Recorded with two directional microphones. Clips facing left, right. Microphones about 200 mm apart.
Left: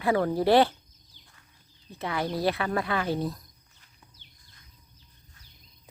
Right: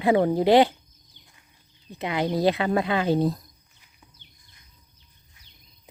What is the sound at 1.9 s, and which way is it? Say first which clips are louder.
Speech: right 5 dB; 20° right (ahead or behind).